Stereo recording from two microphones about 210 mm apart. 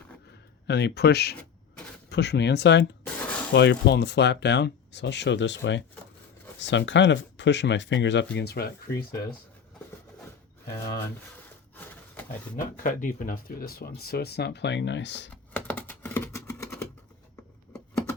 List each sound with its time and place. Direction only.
0.7 s speech: 55° left (ahead or behind)
3.2 s a sound: 5° left (ahead or behind)
3.5 s speech: 55° left (ahead or behind)
10.8 s speech: 15° left (ahead or behind)
12.8 s speech: 40° left (ahead or behind); by 15.3 s 55° left (ahead or behind)
15.5 s computer keyboard: 10° left (ahead or behind)